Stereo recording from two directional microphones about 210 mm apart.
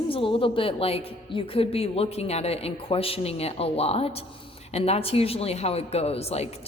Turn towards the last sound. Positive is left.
turn(degrees=30)  # may be behind; listen again after turning